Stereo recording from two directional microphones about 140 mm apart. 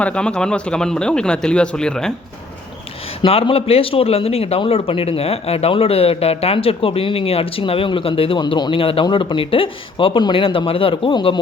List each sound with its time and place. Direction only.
0.0 s speech: 5° left (ahead or behind)
3.2 s speech: 45° left (ahead or behind)